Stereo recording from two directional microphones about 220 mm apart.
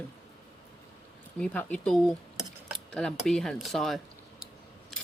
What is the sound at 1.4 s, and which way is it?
Speech, 5° left (ahead or behind).